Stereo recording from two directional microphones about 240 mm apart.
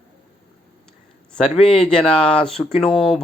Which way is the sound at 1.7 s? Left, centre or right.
Centre.